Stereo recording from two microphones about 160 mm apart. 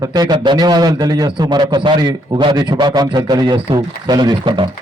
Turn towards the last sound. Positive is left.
turn(degrees=-30)  # may be behind; listen again after turning